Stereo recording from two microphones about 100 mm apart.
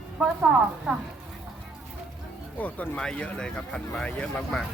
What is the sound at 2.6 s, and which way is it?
Speech, 10° left (ahead or behind).